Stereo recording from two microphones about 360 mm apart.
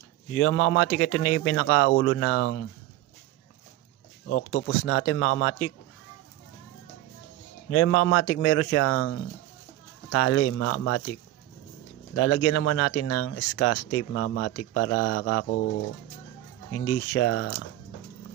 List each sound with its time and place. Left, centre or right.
0.3 s speech: left
4.5 s speech: left
7.7 s speech: left
12.1 s speech: left
17.1 s speech: left